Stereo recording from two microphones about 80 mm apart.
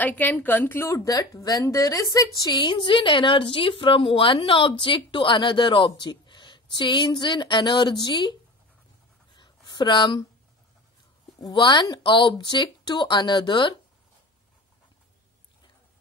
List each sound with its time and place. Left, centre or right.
0.0 s a woman's voice: left
0.8 s a woman's voice: left
2.6 s a woman's voice: left
9.3 s a sound: left
11.3 s speech: left